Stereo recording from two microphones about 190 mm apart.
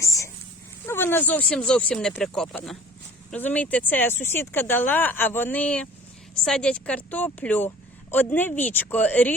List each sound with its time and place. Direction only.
0.0 s dog: 15° left (ahead or behind)
0.9 s speech: 10° left (ahead or behind)